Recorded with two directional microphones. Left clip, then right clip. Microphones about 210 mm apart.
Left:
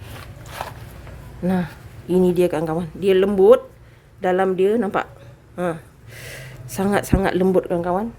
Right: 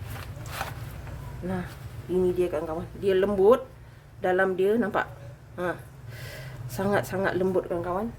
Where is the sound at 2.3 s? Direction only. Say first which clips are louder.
Left 8 dB; 55° left (ahead or behind).